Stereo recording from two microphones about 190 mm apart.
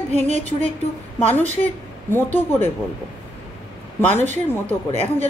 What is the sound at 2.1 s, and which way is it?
Speech, 10° left (ahead or behind).